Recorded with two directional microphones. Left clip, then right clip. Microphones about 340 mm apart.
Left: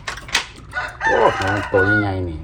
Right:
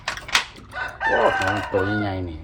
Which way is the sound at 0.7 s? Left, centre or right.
Centre.